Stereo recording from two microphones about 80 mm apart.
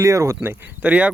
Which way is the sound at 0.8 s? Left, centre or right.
Centre.